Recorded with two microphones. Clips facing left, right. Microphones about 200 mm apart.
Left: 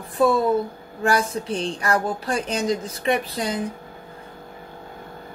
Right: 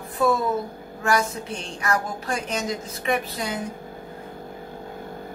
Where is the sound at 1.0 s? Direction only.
35° left (ahead or behind).